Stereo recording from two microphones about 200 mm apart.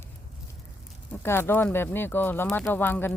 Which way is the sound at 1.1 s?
10° left (ahead or behind).